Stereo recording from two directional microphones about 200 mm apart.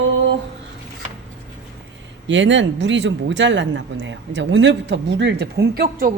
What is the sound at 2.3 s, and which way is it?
Speech, 65° right (ahead or behind).